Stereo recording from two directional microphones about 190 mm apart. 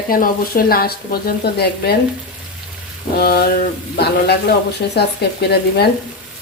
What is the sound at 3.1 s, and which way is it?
Speech, 55° left (ahead or behind).